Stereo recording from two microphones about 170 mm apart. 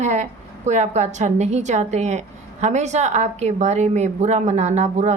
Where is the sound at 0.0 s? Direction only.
40° right (ahead or behind).